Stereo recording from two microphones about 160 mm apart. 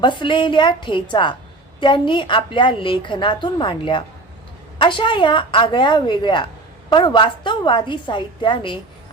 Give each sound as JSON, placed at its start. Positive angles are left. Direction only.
{"t": 0.0, "sound": "a woman's voice", "side_deg": 30}